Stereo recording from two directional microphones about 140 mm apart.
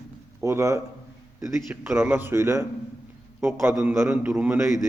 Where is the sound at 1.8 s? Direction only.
15° right (ahead or behind).